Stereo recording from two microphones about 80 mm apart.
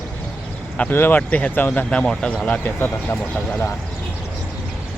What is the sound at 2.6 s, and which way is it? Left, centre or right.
Speech, left.